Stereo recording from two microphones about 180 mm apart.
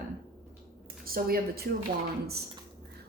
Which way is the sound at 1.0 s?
55° right (ahead or behind).